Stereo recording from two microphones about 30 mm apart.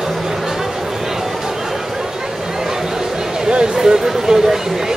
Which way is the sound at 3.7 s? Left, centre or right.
Centre.